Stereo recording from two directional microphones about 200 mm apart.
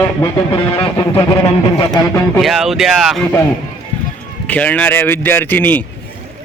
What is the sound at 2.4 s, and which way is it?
A man's voice, centre (ahead or behind).